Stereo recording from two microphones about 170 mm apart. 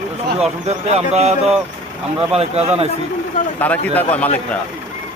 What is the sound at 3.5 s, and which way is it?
Speech, 10° left (ahead or behind).